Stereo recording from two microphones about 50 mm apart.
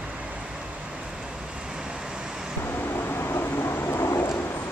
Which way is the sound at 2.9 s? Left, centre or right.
Left.